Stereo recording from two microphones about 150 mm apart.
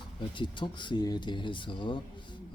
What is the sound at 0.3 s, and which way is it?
Speech, 30° left (ahead or behind).